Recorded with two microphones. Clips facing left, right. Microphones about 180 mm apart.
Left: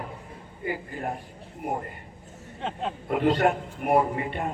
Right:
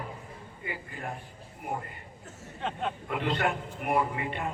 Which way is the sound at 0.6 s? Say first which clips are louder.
Left 8 dB; 40° left (ahead or behind).